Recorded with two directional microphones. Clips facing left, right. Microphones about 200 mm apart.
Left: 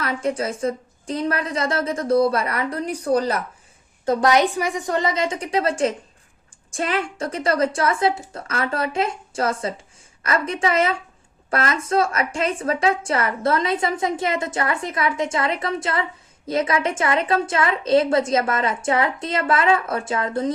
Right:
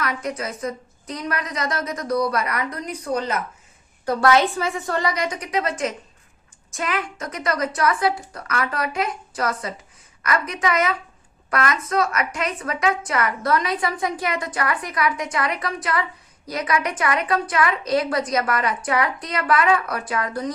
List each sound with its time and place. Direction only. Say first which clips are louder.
0.0 s a woman's voice: left 3 dB; 30° left (ahead or behind)
4.0 s a woman's voice: left 1 dB; 20° left (ahead or behind)